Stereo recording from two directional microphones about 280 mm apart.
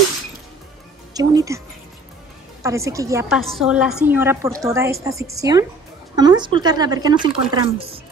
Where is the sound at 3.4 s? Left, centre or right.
Centre.